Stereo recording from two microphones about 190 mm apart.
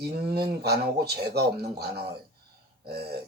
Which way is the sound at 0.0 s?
55° right (ahead or behind).